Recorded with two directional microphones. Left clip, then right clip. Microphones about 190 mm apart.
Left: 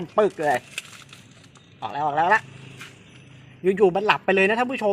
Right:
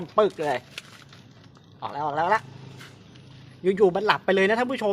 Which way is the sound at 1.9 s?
25° left (ahead or behind).